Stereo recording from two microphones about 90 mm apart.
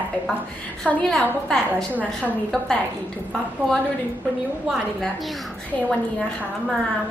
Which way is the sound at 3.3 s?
5° left (ahead or behind).